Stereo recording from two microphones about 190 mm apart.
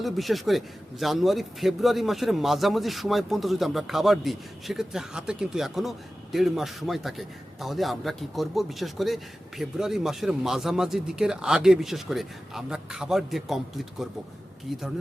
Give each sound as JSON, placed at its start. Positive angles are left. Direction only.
{"t": 0.0, "sound": "a man's voice", "side_deg": 0}